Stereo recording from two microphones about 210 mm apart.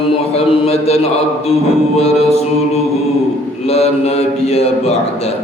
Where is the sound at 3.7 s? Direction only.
30° left (ahead or behind).